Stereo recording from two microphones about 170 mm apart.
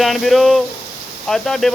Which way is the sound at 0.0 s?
Centre (ahead or behind).